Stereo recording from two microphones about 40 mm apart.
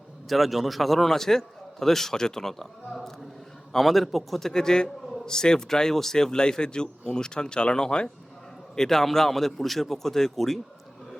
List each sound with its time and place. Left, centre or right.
0.3 s a man's voice: centre